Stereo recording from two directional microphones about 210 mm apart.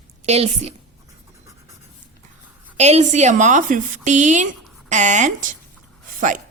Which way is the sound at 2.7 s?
30° right (ahead or behind).